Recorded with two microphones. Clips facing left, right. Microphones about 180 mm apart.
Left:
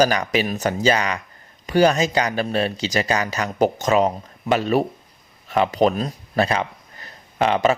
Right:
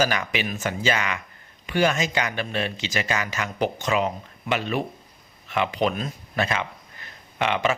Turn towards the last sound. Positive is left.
turn(degrees=35)  # may be behind; listen again after turning